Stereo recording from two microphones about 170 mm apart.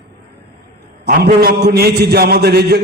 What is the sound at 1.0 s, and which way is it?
A man's voice, 65° right (ahead or behind).